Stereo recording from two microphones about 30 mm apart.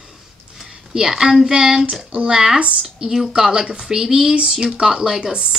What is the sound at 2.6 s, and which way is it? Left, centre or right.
Speech, right.